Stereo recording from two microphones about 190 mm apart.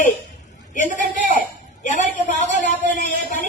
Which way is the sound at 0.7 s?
45° left (ahead or behind).